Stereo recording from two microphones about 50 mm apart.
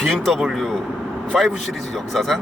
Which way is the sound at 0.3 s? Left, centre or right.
Centre.